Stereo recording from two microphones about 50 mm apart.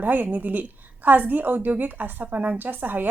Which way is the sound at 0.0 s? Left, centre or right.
Right.